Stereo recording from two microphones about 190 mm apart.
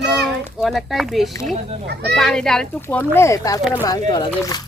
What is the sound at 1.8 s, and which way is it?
Speech, 60° right (ahead or behind).